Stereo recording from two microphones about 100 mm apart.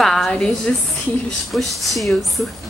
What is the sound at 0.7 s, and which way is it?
Speech, 15° left (ahead or behind).